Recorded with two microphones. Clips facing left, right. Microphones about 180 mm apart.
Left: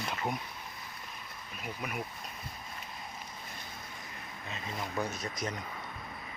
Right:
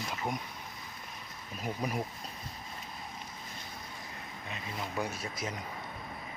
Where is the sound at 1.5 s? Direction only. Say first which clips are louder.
Right 5 dB; 35° right (ahead or behind).